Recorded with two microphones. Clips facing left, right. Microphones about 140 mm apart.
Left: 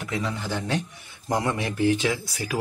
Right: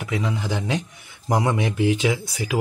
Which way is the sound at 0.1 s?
10° right (ahead or behind).